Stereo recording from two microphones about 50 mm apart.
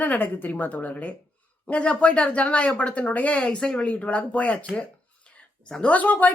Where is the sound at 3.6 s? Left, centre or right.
Centre.